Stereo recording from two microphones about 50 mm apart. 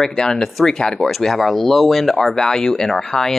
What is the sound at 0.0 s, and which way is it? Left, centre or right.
Speech, centre.